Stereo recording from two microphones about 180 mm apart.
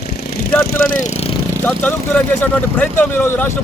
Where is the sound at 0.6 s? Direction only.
45° left (ahead or behind).